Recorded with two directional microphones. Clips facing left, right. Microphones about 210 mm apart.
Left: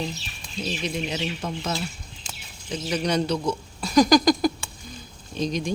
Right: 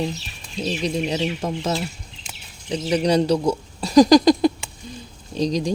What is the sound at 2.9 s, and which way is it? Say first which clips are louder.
Speech: right 6 dB; 35° right (ahead or behind).